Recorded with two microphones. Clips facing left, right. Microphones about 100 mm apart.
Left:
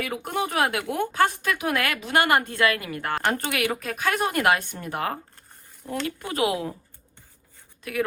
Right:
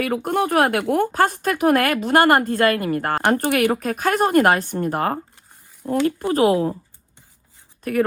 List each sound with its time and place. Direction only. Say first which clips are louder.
0.0 s speech: right 7 dB; 50° right (ahead or behind)
7.9 s speech: right 8 dB; 45° right (ahead or behind)